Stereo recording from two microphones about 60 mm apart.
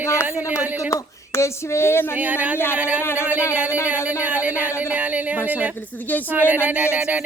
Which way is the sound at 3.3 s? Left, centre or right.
Left.